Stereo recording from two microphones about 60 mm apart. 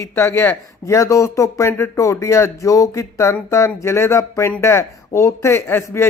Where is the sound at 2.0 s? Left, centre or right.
Left.